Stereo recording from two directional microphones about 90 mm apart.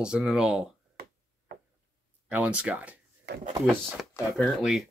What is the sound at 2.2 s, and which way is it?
Speech, 15° right (ahead or behind).